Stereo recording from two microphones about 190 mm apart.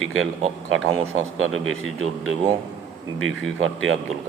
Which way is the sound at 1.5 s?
Centre (ahead or behind).